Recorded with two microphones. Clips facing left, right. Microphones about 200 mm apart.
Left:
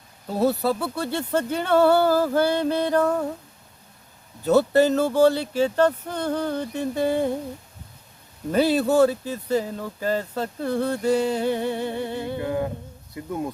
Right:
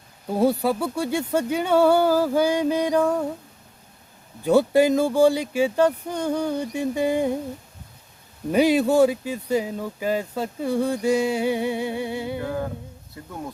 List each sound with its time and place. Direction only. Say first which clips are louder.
0.3 s speech: right 1 dB; 10° right (ahead or behind)
4.4 s speech: even; 10° right (ahead or behind)
8.5 s speech: right 1 dB; 10° right (ahead or behind)
12.4 s humming: left 2 dB; 20° left (ahead or behind)